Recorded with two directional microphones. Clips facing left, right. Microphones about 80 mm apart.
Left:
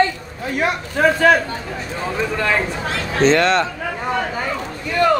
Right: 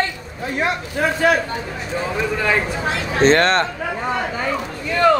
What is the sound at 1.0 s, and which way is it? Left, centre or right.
Speech, left.